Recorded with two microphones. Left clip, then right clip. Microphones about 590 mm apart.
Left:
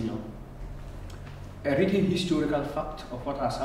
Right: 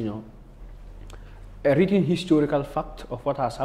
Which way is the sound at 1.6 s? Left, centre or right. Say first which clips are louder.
Right 5 dB; right.